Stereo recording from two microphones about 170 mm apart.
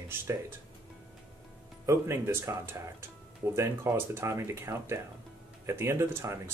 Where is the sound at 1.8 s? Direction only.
15° right (ahead or behind).